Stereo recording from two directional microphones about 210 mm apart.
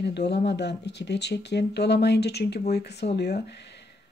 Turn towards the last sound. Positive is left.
turn(degrees=55)  # may be behind; listen again after turning